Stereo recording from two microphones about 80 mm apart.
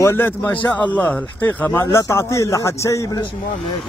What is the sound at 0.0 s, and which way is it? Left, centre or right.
Speech, left.